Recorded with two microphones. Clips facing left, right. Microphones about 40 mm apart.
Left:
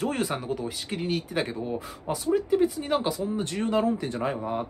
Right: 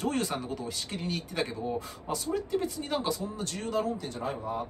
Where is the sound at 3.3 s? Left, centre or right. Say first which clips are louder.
Left 6 dB; left.